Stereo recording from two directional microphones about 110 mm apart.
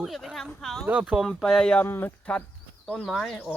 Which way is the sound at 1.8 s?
20° left (ahead or behind).